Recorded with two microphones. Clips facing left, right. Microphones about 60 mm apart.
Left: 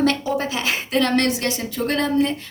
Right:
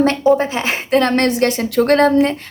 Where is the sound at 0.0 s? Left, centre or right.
Right.